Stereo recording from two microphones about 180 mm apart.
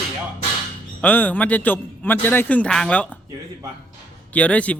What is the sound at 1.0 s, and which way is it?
A man's voice, 10° left (ahead or behind).